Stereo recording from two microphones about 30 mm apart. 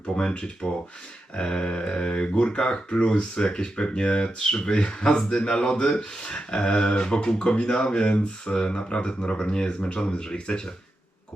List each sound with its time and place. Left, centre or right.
0.0 s speech: left
1.4 s speech: left
10.0 s speech: left